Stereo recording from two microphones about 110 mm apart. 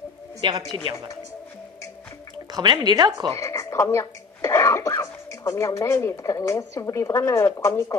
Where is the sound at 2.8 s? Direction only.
40° right (ahead or behind).